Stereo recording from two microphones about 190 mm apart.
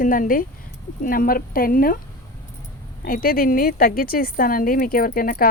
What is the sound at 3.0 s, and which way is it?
A woman's voice, 50° left (ahead or behind).